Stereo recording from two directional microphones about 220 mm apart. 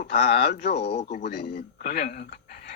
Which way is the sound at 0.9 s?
35° left (ahead or behind).